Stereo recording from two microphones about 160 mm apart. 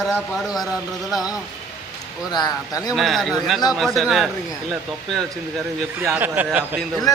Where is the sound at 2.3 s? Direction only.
25° left (ahead or behind).